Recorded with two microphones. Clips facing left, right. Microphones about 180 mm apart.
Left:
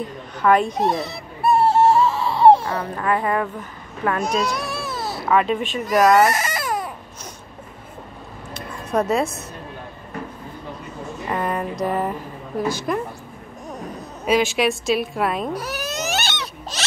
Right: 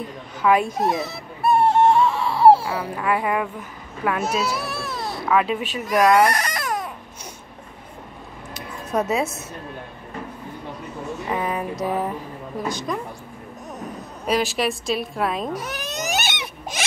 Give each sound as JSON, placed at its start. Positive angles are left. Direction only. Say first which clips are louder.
{"t": 0.4, "sound": "speech", "louder": "left 2 dB", "side_deg": -5}
{"t": 1.7, "sound": "baby cry", "louder": "even", "side_deg": 5}
{"t": 4.0, "sound": "speech", "louder": "left 1 dB", "side_deg": -5}
{"t": 8.9, "sound": "speech", "louder": "left 2 dB", "side_deg": -5}
{"t": 11.2, "sound": "speech", "louder": "left 2 dB", "side_deg": -5}
{"t": 14.2, "sound": "speech", "louder": "left 3 dB", "side_deg": 0}
{"t": 16.0, "sound": "a sound", "louder": "right 2 dB", "side_deg": -15}